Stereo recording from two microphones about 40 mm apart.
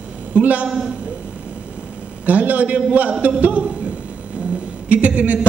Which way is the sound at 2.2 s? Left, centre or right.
Right.